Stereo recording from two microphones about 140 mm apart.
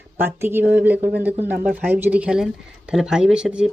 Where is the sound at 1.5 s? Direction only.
90° right.